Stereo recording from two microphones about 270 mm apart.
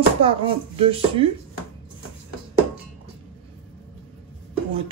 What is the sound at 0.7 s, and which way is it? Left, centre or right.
Speech, right.